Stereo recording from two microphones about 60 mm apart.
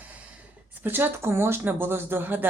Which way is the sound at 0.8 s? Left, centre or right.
Right.